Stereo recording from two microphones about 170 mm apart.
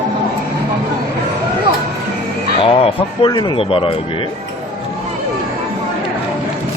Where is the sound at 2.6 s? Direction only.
35° left (ahead or behind).